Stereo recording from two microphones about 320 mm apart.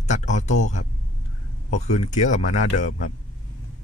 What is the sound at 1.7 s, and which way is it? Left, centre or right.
Speech, left.